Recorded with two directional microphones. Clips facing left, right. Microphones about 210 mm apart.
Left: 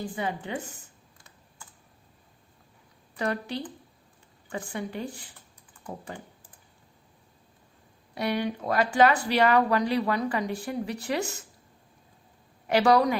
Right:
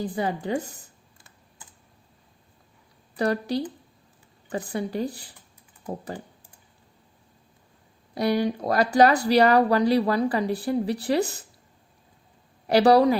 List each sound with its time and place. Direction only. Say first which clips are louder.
0.0 s speech: right 5 dB; 35° right (ahead or behind)
3.2 s speech: right 6 dB; 35° right (ahead or behind)
8.1 s speech: right 5 dB; 35° right (ahead or behind)
12.6 s speech: right 4 dB; 35° right (ahead or behind)